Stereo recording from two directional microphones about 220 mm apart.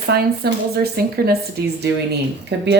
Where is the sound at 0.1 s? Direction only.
45° right (ahead or behind).